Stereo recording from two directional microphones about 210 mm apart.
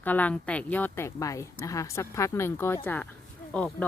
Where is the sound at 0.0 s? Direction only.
10° left (ahead or behind).